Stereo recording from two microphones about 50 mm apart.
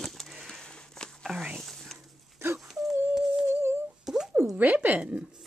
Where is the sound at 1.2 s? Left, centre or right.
Centre.